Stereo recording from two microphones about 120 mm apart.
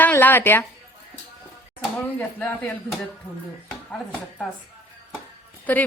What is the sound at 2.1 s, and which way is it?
Speech, 15° left (ahead or behind).